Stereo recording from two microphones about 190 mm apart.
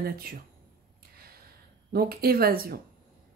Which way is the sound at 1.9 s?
55° right (ahead or behind).